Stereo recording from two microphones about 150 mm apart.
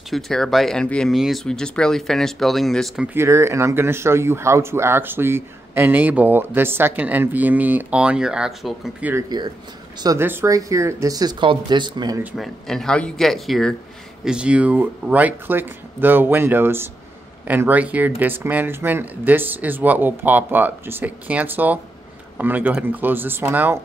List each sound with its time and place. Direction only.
0.1 s speech: centre (ahead or behind)
3.2 s speech: 20° right (ahead or behind); by 9.1 s centre (ahead or behind)
9.1 s speech: 25° right (ahead or behind)
10.0 s speech: 15° right (ahead or behind)
12.4 s speech: 5° left (ahead or behind); by 23.8 s 15° right (ahead or behind)